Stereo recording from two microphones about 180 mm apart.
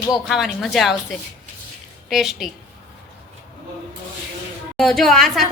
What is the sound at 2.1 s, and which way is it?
Speech, centre (ahead or behind).